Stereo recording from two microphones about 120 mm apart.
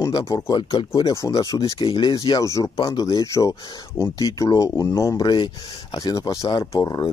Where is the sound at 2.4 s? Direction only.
25° left (ahead or behind).